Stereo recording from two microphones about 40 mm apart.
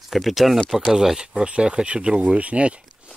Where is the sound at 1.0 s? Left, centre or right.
Centre.